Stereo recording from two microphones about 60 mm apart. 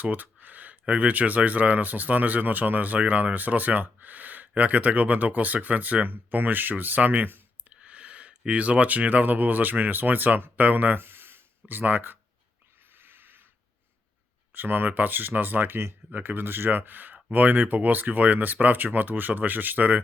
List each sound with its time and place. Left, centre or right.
0.0 s speech: right
7.7 s speech: centre
12.9 s a sound: right
14.5 s speech: right